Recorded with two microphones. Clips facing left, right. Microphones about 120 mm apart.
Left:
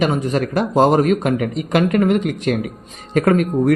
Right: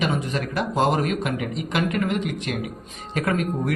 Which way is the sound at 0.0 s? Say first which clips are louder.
Left 7 dB; 45° left (ahead or behind).